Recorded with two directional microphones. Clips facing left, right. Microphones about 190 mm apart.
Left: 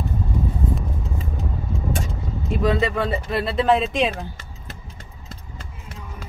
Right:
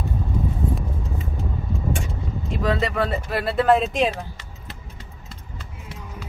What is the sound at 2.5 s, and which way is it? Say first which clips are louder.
Speech: left 2 dB; centre (ahead or behind).